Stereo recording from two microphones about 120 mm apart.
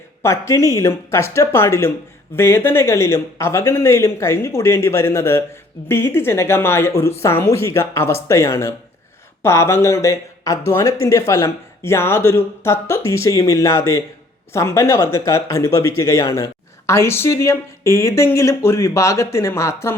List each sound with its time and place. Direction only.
0.2 s speech: 25° left (ahead or behind)